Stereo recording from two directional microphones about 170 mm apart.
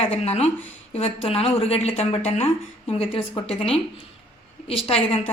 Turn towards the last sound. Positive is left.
turn(degrees=35)  # may be behind; listen again after turning